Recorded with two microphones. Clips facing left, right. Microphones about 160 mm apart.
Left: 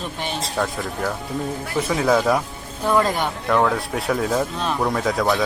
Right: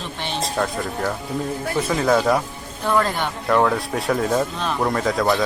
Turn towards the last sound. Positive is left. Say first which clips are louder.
# right 1 dB
turn(degrees=0)  # may be behind; listen again after turning